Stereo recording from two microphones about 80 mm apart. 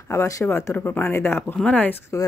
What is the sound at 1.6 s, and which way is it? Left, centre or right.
Speech, centre.